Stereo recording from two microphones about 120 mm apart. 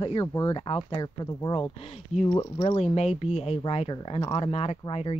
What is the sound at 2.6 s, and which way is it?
Speech, 55° left (ahead or behind).